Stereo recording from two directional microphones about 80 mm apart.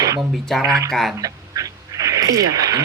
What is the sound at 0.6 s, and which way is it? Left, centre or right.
Speech, right.